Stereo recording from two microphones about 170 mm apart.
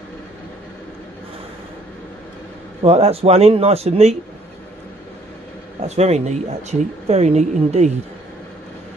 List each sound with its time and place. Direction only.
2.8 s speech: 35° right (ahead or behind)
5.8 s speech: 40° right (ahead or behind)